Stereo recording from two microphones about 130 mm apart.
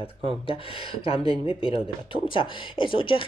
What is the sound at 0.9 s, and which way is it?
Speech, 45° left (ahead or behind).